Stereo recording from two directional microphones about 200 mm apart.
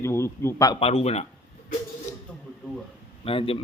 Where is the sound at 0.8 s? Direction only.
30° left (ahead or behind).